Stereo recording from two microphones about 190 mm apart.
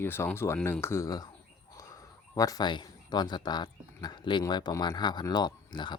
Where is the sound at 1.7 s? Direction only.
20° left (ahead or behind).